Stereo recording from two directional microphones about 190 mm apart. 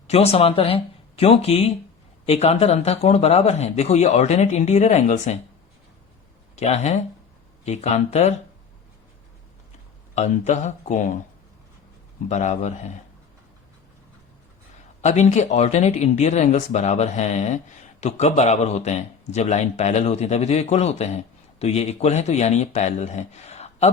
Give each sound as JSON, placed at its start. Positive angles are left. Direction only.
{"t": 0.1, "sound": "speech", "side_deg": 35}
{"t": 6.6, "sound": "speech", "side_deg": 35}
{"t": 10.2, "sound": "speech", "side_deg": 40}
{"t": 12.3, "sound": "speech", "side_deg": 40}
{"t": 15.0, "sound": "speech", "side_deg": 35}